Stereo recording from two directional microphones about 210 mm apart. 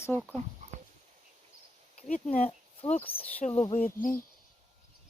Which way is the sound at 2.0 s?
35° left (ahead or behind).